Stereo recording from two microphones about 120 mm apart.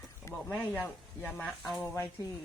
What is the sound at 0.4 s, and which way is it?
Speech, 10° left (ahead or behind).